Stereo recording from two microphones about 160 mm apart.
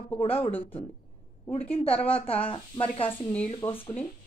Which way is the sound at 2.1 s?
35° left (ahead or behind).